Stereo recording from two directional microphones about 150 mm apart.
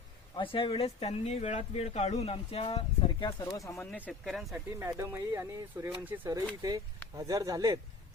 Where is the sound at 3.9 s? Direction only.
5° left (ahead or behind).